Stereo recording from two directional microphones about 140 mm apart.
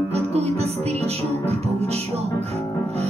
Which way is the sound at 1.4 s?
50° right (ahead or behind).